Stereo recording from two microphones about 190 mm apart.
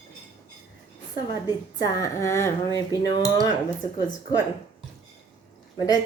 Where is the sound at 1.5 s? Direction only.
20° left (ahead or behind).